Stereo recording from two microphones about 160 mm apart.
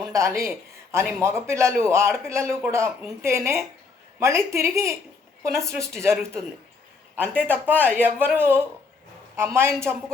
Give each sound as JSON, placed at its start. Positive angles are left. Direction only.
{"t": 0.1, "sound": "a woman's voice", "side_deg": -20}
{"t": 7.2, "sound": "speech", "side_deg": -10}